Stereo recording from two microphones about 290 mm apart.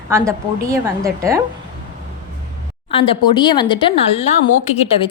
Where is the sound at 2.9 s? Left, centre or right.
Centre.